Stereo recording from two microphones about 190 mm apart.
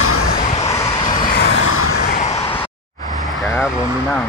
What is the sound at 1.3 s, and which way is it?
Vehicle, 60° left (ahead or behind).